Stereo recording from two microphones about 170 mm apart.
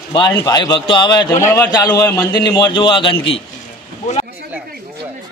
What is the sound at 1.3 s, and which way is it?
A man's voice, 15° left (ahead or behind).